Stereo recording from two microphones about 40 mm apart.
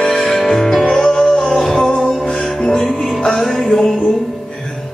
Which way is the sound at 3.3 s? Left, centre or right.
Centre.